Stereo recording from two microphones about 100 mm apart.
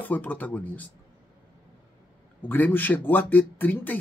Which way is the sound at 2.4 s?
20° left (ahead or behind).